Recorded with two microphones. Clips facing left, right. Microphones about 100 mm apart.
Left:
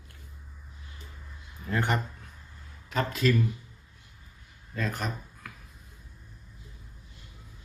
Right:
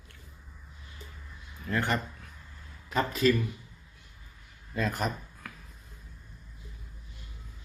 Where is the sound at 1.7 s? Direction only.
20° left (ahead or behind).